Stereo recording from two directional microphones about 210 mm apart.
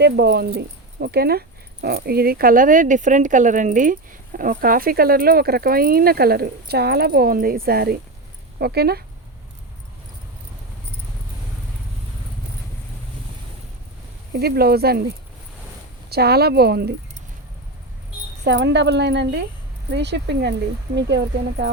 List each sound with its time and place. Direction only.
0.0 s speech: 50° right (ahead or behind)
14.3 s speech: 50° right (ahead or behind)
16.0 s speech: 50° right (ahead or behind)
18.4 s a woman's voice: 55° right (ahead or behind)